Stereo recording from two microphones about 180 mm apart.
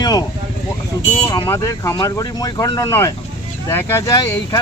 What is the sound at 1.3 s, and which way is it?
Speech, 20° left (ahead or behind).